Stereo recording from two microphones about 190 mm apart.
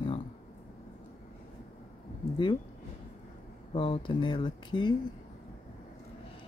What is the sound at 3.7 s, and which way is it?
Speech, 30° left (ahead or behind).